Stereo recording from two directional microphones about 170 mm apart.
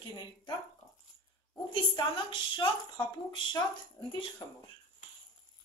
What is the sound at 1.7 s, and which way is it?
Speech, 30° left (ahead or behind).